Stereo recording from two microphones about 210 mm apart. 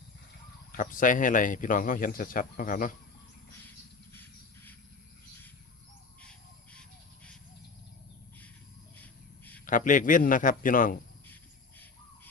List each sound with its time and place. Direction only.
0.7 s speech: 40° left (ahead or behind)
4.1 s a sound: 10° left (ahead or behind)
9.0 s cricket: 10° left (ahead or behind)
9.6 s speech: 40° left (ahead or behind)